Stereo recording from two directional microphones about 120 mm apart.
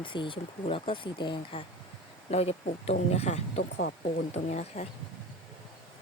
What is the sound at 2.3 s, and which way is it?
Speech, 55° left (ahead or behind).